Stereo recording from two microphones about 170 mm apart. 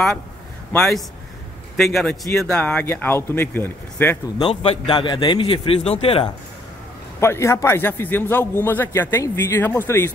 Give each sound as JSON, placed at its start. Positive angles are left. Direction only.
{"t": 0.7, "sound": "a man's voice", "side_deg": 0}
{"t": 4.5, "sound": "a man's voice", "side_deg": 35}
{"t": 7.2, "sound": "a man's voice", "side_deg": 15}